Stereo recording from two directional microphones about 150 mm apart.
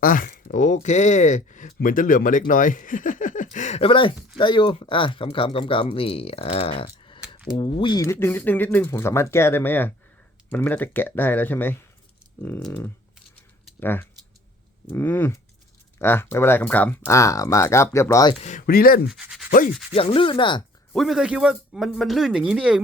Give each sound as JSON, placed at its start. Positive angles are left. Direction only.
{"t": 0.0, "sound": "speech", "side_deg": 65}
{"t": 8.0, "sound": "speech", "side_deg": 15}
{"t": 13.7, "sound": "speech", "side_deg": 15}
{"t": 18.4, "sound": "speech", "side_deg": 65}
{"t": 19.0, "sound": "a man's voice", "side_deg": -5}
{"t": 19.5, "sound": "sanding", "side_deg": 65}
{"t": 19.9, "sound": "speech", "side_deg": 35}
{"t": 20.9, "sound": "a man's voice", "side_deg": 0}